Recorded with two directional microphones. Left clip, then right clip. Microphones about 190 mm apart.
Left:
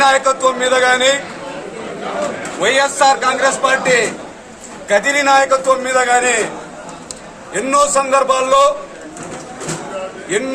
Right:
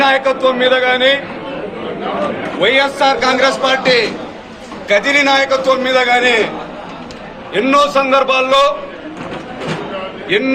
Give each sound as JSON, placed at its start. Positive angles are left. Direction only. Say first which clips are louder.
{"t": 0.0, "sound": "a man's voice", "louder": "even", "side_deg": 20}
{"t": 2.6, "sound": "a man's voice", "louder": "right 1 dB", "side_deg": 20}
{"t": 7.5, "sound": "a man's voice", "louder": "right 2 dB", "side_deg": 20}